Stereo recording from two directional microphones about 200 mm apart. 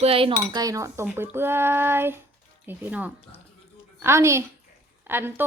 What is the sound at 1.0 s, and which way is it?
Speech, 10° right (ahead or behind).